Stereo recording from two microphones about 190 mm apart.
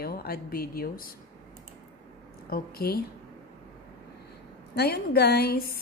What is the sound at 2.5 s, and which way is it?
Speech, 55° left (ahead or behind).